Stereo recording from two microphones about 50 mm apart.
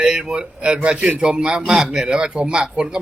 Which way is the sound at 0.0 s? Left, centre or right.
Centre.